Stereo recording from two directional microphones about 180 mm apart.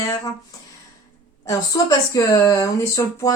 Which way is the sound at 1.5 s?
20° left (ahead or behind).